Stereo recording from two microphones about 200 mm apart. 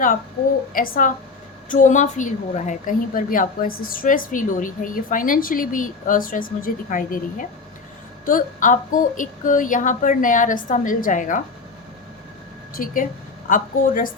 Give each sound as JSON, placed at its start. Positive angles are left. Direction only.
{"t": 0.7, "sound": "a woman's voice", "side_deg": 45}
{"t": 12.7, "sound": "a woman's voice", "side_deg": 45}